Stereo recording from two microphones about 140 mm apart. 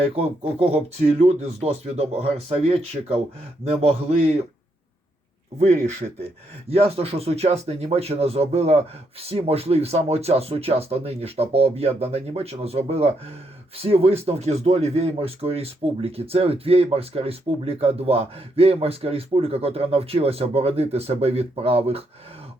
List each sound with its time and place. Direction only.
0.2 s speech: 45° right (ahead or behind)
5.5 s speech: 50° right (ahead or behind)